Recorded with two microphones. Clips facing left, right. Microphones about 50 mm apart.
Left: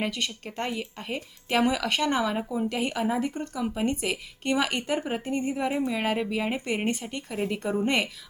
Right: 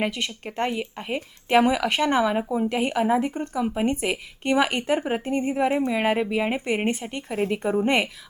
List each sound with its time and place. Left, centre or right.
0.0 s speech: right